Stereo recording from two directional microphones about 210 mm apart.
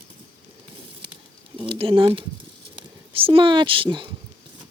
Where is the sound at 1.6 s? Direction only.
25° right (ahead or behind).